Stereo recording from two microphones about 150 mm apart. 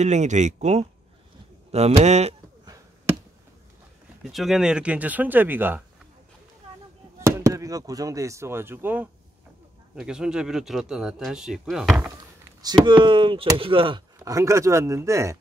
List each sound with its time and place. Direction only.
0.0 s speech: 50° right (ahead or behind)
2.6 s a sound: 20° right (ahead or behind)
4.2 s speech: centre (ahead or behind)
7.2 s speech: 20° right (ahead or behind); by 11.9 s centre (ahead or behind)
12.6 s speech: 30° right (ahead or behind)
14.2 s speech: 20° right (ahead or behind)